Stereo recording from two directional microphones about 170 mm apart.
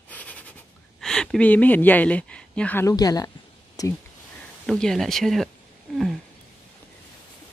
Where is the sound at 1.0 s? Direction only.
5° left (ahead or behind); by 3.9 s 20° left (ahead or behind).